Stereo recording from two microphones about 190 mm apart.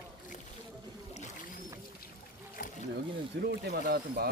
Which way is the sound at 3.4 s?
55° right (ahead or behind).